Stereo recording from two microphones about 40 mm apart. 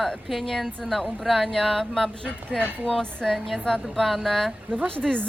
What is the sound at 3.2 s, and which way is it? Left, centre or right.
Speech, centre.